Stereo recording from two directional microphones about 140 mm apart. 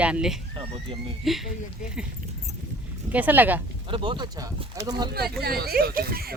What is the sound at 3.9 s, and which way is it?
Speech, 35° right (ahead or behind).